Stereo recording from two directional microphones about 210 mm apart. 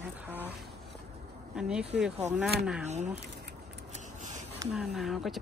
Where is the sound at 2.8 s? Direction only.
35° right (ahead or behind).